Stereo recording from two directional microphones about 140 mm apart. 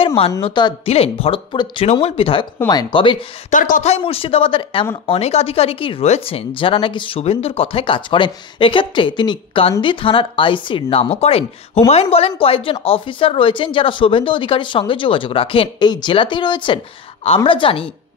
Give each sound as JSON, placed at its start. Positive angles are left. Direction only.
{"t": 0.0, "sound": "a woman's voice", "side_deg": 40}
{"t": 0.4, "sound": "a woman's voice", "side_deg": 30}
{"t": 0.8, "sound": "a woman's voice", "side_deg": 45}
{"t": 3.4, "sound": "speech", "side_deg": 65}
{"t": 3.9, "sound": "a woman's voice", "side_deg": 40}